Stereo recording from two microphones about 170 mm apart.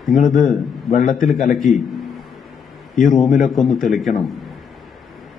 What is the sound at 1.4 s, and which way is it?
Speech, 50° left (ahead or behind).